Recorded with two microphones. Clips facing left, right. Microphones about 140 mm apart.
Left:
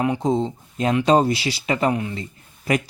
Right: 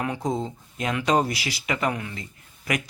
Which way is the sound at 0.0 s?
25° left (ahead or behind).